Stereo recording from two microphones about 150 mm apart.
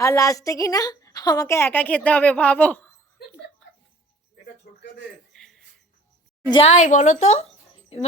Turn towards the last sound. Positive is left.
turn(degrees=50)  # may be behind; listen again after turning